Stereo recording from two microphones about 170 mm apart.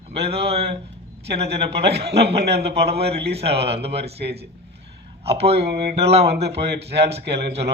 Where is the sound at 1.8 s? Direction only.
35° right (ahead or behind).